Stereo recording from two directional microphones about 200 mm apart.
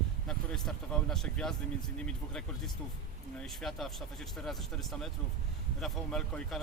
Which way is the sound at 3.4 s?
Centre (ahead or behind).